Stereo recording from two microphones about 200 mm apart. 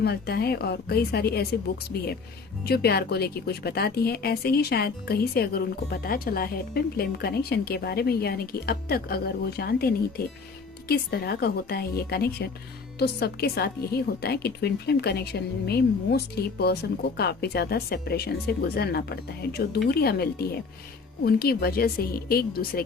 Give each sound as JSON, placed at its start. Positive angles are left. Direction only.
{"t": 0.0, "sound": "a woman's voice", "side_deg": 55}
{"t": 2.6, "sound": "a woman's voice", "side_deg": 50}